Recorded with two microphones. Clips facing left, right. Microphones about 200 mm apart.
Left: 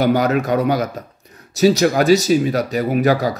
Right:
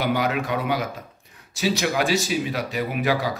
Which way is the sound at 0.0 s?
40° left (ahead or behind).